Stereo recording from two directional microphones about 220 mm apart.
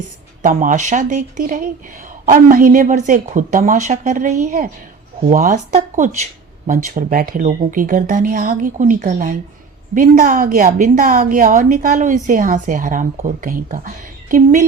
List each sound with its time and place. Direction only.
0.4 s a woman's voice: 35° right (ahead or behind)